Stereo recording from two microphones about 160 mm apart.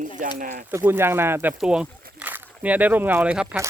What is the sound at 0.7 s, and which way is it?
Speech, 15° right (ahead or behind).